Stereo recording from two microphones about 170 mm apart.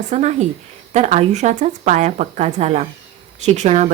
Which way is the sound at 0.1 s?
45° right (ahead or behind).